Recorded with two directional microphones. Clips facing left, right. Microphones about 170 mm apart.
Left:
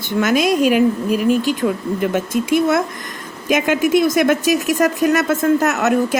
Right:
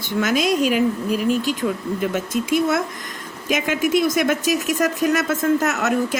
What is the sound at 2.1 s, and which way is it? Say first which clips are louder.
Speech: left 4 dB; 55° left (ahead or behind).